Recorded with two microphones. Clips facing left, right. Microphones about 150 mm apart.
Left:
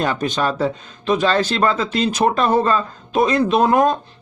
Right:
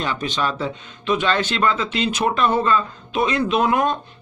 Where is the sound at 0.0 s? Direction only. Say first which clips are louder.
Left 4 dB; 45° left (ahead or behind).